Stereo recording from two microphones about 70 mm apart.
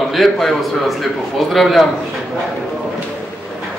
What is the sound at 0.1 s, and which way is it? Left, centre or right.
A man's voice, centre.